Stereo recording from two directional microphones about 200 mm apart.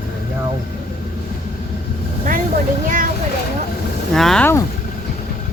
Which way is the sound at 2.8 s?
40° right (ahead or behind).